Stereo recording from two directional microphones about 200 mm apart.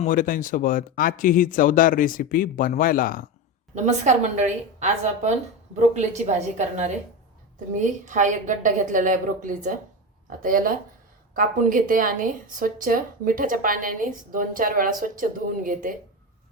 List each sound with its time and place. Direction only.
0.0 s speech: 40° left (ahead or behind)
3.8 s a woman's voice: 35° right (ahead or behind)